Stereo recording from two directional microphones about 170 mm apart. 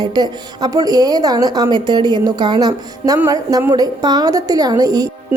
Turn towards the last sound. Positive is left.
turn(degrees=-20)  # may be behind; listen again after turning